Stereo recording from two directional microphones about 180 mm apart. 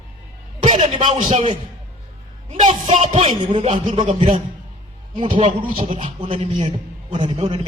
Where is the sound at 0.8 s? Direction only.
30° right (ahead or behind).